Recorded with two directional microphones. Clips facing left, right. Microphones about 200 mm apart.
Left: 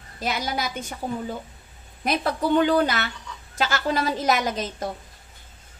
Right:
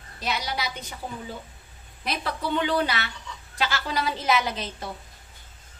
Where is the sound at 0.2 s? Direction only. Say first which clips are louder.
Left 3 dB; 50° left (ahead or behind).